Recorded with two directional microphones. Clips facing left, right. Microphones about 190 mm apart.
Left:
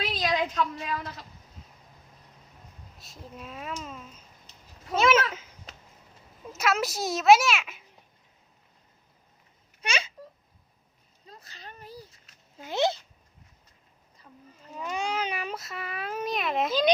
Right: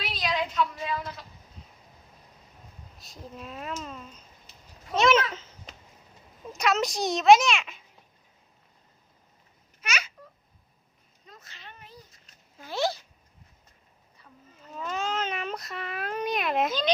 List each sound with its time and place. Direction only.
0.0 s a sound: 45° left (ahead or behind)
3.0 s a child's voice: centre (ahead or behind)
9.8 s speech: 30° left (ahead or behind)
11.3 s a sound: 35° left (ahead or behind)
12.5 s speech: 20° left (ahead or behind)
14.8 s speech: 15° left (ahead or behind)